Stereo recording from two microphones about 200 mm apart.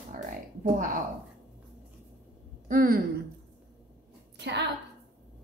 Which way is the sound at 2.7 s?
45° right (ahead or behind).